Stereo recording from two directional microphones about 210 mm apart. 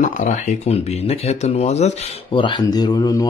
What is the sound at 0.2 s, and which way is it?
Speech, 35° left (ahead or behind).